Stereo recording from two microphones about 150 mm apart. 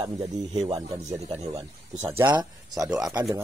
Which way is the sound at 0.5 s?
40° right (ahead or behind).